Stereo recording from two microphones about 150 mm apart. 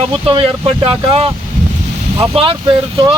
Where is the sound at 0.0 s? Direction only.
40° right (ahead or behind).